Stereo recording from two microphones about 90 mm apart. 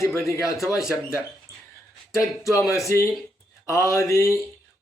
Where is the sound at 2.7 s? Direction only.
35° left (ahead or behind).